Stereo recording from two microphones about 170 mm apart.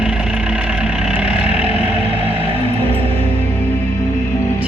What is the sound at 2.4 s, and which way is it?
Music, 35° right (ahead or behind).